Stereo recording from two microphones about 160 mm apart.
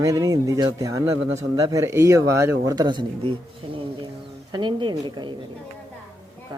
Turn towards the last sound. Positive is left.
turn(degrees=-30)  # may be behind; listen again after turning